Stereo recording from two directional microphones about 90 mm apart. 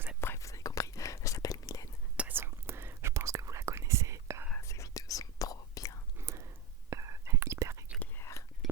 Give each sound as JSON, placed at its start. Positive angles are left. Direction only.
{"t": 0.2, "sound": "whispering", "side_deg": 30}
{"t": 2.1, "sound": "whispering", "side_deg": -20}
{"t": 4.6, "sound": "whispering", "side_deg": 35}
{"t": 6.1, "sound": "whispering", "side_deg": -30}
{"t": 8.2, "sound": "whispering", "side_deg": 35}